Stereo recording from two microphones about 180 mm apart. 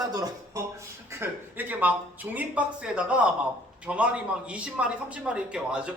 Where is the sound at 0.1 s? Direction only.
20° right (ahead or behind).